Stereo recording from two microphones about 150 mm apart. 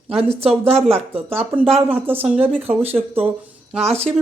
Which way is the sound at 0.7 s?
45° right (ahead or behind).